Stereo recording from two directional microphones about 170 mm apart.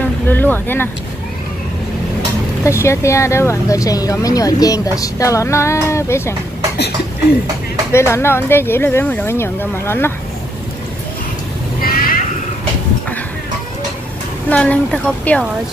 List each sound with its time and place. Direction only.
0.3 s speech: 10° left (ahead or behind)
2.6 s speech: 15° left (ahead or behind)
7.9 s speech: 15° left (ahead or behind)
11.8 s vehicle: 60° left (ahead or behind)
14.5 s speech: 10° left (ahead or behind)